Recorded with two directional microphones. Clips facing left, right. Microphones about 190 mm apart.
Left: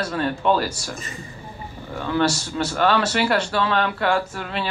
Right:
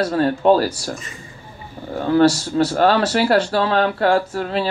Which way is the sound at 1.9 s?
40° right (ahead or behind).